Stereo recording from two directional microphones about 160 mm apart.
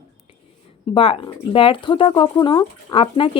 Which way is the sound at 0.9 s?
35° left (ahead or behind).